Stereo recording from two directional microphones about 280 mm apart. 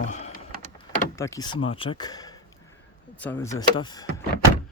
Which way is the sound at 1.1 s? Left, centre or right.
Centre.